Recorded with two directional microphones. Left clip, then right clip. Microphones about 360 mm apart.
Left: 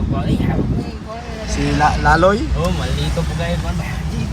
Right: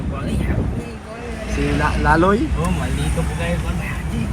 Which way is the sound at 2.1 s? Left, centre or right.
Centre.